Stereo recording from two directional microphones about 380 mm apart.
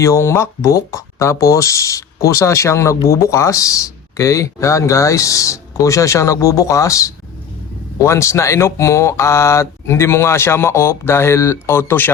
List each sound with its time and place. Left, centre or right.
0.0 s speech: centre